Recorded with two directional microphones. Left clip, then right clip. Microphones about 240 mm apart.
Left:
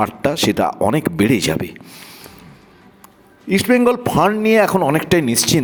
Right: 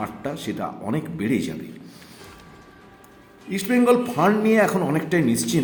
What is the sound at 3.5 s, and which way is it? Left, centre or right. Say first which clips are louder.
Speech: left 5 dB; left.